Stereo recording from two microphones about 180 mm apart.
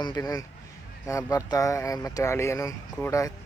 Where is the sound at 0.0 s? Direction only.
20° left (ahead or behind).